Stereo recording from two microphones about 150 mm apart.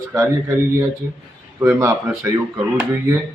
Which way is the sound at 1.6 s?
15° right (ahead or behind).